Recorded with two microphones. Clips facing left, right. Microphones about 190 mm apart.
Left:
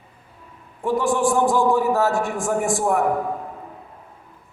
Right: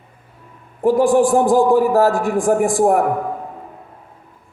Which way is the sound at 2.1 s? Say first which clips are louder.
Right 6 dB; 55° right (ahead or behind).